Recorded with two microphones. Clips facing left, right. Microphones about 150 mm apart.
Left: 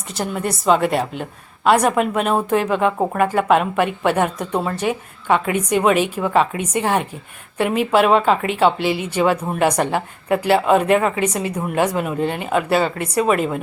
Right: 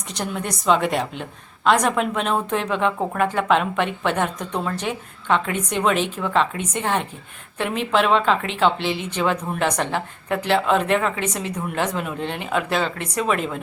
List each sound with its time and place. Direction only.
0.1 s a woman's voice: 5° left (ahead or behind)